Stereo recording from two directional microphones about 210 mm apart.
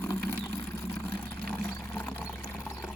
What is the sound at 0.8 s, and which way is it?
Vehicle, 10° left (ahead or behind).